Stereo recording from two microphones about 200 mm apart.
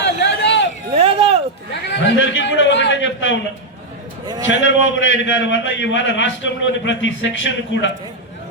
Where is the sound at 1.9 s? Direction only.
65° left (ahead or behind).